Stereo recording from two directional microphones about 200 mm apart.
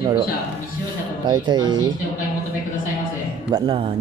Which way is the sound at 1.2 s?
20° right (ahead or behind).